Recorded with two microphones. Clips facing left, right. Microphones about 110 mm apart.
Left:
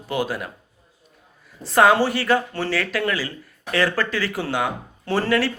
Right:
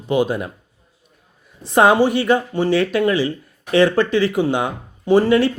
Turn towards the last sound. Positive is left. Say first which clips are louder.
# right 7 dB
turn(degrees=-20)  # may be behind; listen again after turning